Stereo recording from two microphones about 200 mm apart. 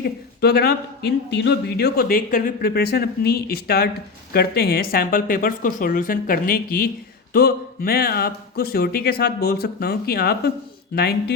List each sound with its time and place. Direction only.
0.0 s speech: 55° left (ahead or behind)